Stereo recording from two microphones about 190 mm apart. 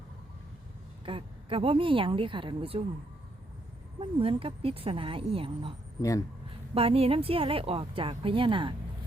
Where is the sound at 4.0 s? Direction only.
30° right (ahead or behind).